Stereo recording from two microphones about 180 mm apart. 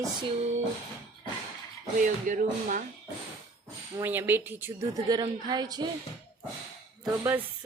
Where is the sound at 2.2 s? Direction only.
45° right (ahead or behind).